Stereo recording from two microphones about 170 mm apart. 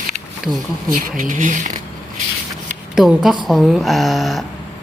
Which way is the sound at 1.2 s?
50° right (ahead or behind).